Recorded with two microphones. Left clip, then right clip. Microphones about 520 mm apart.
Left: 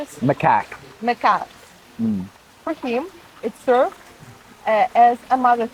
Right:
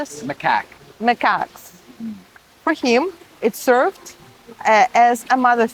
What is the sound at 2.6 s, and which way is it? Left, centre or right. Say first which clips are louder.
Speech: right 7 dB; right.